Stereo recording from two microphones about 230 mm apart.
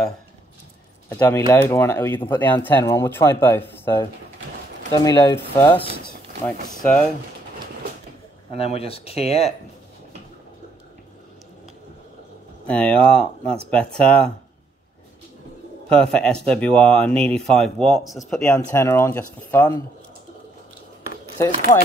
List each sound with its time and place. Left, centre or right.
1.0 s speech: centre
6.8 s speech: centre
8.5 s speech: left
12.6 s speech: centre
15.9 s speech: centre